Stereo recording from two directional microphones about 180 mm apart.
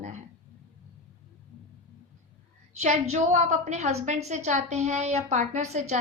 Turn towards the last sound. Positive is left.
turn(degrees=-40)  # may be behind; listen again after turning